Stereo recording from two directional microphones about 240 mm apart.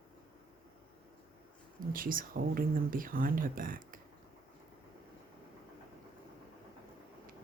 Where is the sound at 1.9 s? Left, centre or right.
Right.